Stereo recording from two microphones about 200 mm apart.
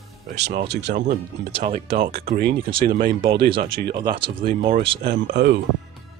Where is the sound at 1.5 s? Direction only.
30° right (ahead or behind).